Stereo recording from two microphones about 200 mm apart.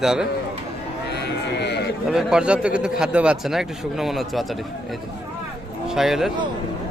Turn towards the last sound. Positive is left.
turn(degrees=0)  # may be behind; listen again after turning